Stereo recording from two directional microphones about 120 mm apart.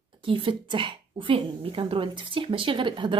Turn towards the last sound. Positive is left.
turn(degrees=-40)  # may be behind; listen again after turning